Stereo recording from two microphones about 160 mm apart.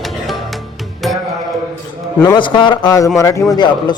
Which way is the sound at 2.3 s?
30° left (ahead or behind).